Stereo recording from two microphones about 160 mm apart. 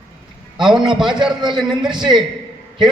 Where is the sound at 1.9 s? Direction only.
30° right (ahead or behind).